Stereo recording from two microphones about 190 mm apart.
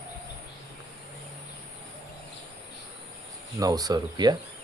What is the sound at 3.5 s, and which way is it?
Speech, 20° right (ahead or behind).